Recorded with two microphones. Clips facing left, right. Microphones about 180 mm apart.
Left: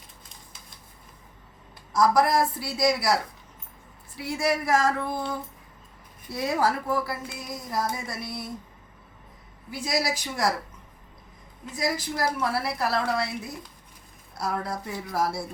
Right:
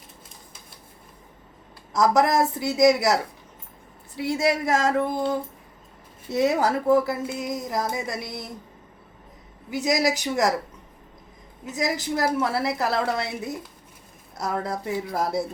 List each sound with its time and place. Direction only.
2.0 s speech: 20° right (ahead or behind)
4.2 s speech: 20° right (ahead or behind)
9.7 s speech: 20° right (ahead or behind)
11.8 s speech: 20° right (ahead or behind)
14.3 s speech: 20° right (ahead or behind)